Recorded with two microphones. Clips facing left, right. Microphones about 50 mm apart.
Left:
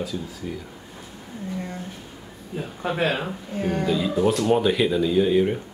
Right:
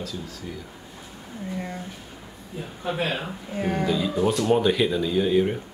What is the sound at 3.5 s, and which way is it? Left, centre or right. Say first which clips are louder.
Speech: left 1 dB; centre.